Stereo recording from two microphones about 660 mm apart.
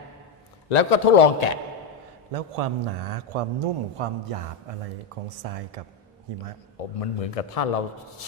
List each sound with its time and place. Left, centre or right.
0.7 s a man's voice: left
2.3 s a man's voice: right
7.0 s a man's voice: left